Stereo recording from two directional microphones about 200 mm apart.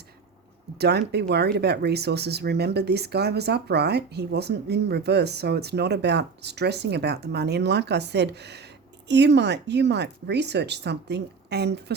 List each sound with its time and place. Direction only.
0.8 s speech: 55° right (ahead or behind)